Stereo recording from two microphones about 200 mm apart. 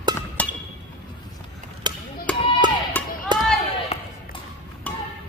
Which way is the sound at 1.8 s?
20° right (ahead or behind).